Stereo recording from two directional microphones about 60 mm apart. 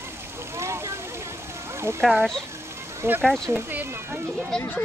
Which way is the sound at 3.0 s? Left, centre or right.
Right.